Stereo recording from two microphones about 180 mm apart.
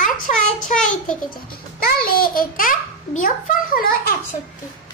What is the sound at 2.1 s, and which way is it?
A child's voice, 55° left (ahead or behind).